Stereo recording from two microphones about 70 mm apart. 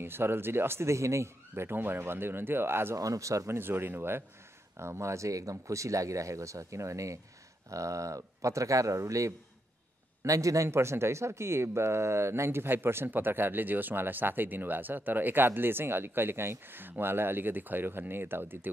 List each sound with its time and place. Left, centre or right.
0.0 s speech: right
3.0 s speech: right